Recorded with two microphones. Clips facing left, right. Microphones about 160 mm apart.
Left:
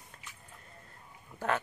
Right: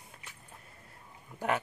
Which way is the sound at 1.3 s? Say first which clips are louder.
Right 1 dB; 15° right (ahead or behind).